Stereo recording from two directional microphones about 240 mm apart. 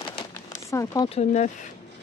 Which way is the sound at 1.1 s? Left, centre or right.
Left.